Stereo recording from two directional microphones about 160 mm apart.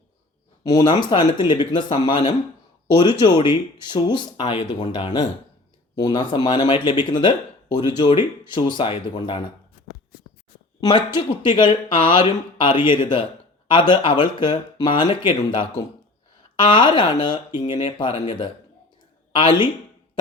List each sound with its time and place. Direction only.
0.6 s speech: 25° left (ahead or behind)
10.8 s speech: 25° left (ahead or behind)